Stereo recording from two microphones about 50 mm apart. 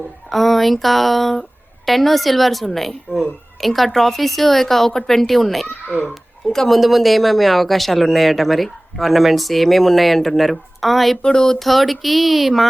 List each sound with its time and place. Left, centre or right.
0.3 s speech: centre
11.2 s a sound: centre
11.6 s speech: centre